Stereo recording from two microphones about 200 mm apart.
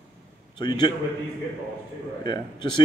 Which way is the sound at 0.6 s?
20° left (ahead or behind).